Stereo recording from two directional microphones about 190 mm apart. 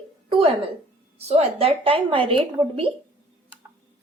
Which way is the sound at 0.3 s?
30° right (ahead or behind).